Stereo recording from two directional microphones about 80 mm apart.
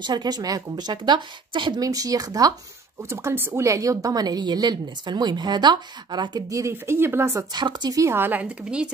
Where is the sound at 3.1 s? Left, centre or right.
Right.